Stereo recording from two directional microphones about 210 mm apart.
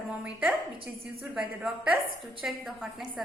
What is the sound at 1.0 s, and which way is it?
A woman's voice, 5° right (ahead or behind).